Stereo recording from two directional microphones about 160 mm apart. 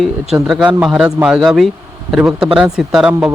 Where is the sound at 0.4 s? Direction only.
5° right (ahead or behind).